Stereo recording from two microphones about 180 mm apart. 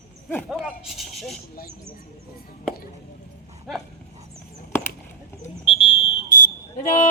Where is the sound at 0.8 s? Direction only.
Centre (ahead or behind).